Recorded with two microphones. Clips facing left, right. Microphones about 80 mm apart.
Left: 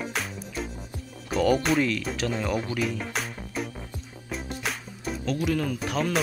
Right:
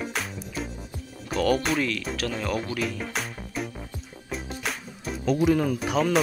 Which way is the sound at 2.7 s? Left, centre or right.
Centre.